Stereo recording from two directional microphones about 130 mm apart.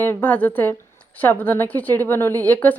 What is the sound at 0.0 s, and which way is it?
Speech, 15° left (ahead or behind).